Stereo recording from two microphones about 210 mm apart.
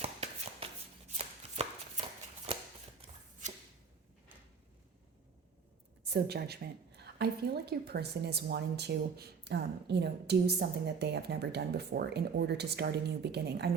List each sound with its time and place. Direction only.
0.0 s chopping: 30° right (ahead or behind)
6.1 s a woman's voice: 50° right (ahead or behind)